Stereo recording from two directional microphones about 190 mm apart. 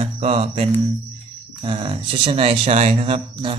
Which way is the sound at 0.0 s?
35° right (ahead or behind).